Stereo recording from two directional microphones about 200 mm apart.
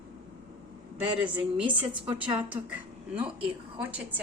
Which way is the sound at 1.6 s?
25° right (ahead or behind).